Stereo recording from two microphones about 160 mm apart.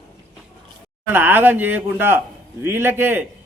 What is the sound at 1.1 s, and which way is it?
A man's voice, 10° right (ahead or behind).